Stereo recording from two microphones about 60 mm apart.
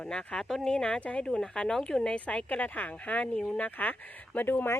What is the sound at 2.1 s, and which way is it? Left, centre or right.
Speech, left.